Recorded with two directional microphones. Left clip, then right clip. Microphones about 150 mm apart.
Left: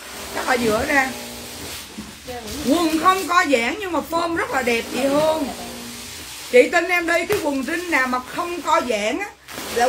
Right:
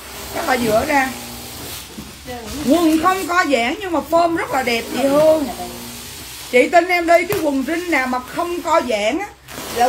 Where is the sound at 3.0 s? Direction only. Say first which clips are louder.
Even; 20° left (ahead or behind).